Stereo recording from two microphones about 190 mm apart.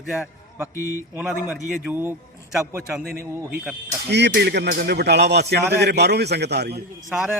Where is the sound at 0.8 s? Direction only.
15° left (ahead or behind).